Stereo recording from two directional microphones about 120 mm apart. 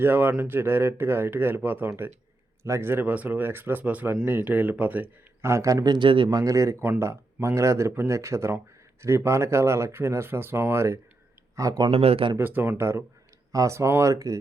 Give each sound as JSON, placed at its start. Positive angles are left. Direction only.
{"t": 0.0, "sound": "speech", "side_deg": -15}
{"t": 6.4, "sound": "speech", "side_deg": -25}
{"t": 11.9, "sound": "speech", "side_deg": -55}
{"t": 12.4, "sound": "speech", "side_deg": -15}